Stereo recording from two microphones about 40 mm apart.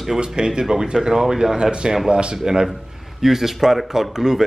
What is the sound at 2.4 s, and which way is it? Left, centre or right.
Speech, centre.